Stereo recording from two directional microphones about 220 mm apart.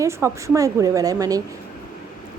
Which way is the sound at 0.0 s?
15° right (ahead or behind).